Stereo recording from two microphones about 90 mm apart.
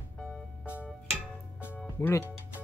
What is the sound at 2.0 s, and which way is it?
Speech, 35° left (ahead or behind).